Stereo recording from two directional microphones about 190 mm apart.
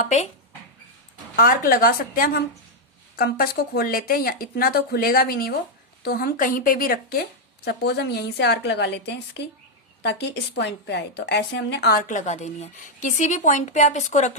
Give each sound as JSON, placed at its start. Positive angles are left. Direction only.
{"t": 0.0, "sound": "a woman's voice", "side_deg": 40}
{"t": 1.4, "sound": "a woman's voice", "side_deg": 50}